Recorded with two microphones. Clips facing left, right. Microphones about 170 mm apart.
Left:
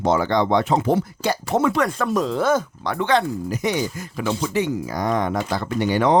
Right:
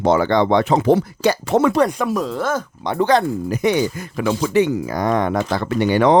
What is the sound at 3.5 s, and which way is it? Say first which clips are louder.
Speech: right 7 dB; 60° right (ahead or behind).